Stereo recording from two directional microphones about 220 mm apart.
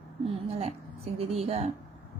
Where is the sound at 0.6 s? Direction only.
25° right (ahead or behind).